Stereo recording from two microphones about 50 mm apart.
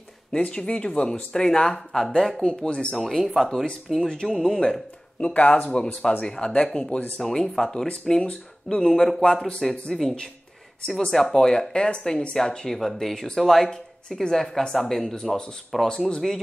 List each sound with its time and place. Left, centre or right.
0.4 s speech: left; by 2.4 s centre
2.4 s speech: centre
3.0 s speech: centre
5.2 s speech: left
15.7 s speech: centre